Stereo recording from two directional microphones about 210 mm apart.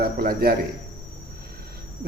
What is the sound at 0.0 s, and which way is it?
Speech, 45° right (ahead or behind).